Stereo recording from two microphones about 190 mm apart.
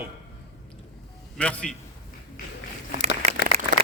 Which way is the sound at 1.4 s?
5° left (ahead or behind).